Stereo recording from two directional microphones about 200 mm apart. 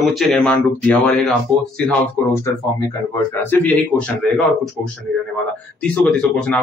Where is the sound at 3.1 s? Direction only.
10° left (ahead or behind).